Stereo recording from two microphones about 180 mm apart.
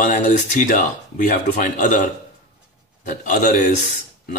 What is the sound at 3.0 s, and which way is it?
Speech, 45° left (ahead or behind).